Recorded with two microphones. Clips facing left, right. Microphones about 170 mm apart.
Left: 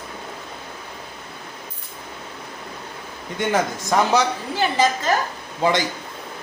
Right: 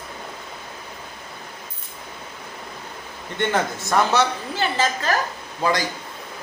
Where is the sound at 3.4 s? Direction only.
10° left (ahead or behind).